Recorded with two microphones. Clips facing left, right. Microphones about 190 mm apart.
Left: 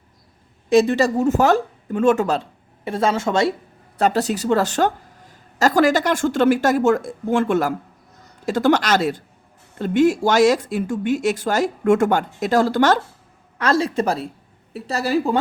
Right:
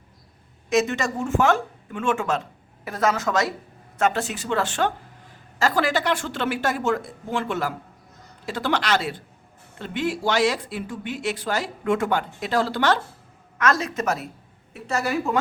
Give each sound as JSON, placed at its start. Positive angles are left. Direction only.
{"t": 0.7, "sound": "speech", "side_deg": 35}
{"t": 13.6, "sound": "speech", "side_deg": 30}